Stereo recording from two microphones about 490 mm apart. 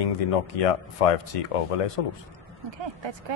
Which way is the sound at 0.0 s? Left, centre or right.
Left.